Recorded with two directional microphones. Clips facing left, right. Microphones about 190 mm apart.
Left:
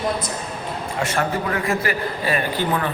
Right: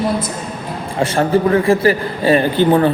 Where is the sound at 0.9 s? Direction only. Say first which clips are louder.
Right 9 dB; 30° right (ahead or behind).